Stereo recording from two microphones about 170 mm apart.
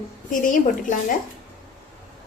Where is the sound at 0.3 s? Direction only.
50° left (ahead or behind).